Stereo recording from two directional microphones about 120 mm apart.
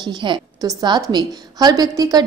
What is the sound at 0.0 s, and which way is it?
A woman's voice, 40° right (ahead or behind).